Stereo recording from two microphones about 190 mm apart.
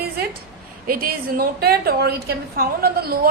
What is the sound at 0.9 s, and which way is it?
A woman's voice, 50° right (ahead or behind).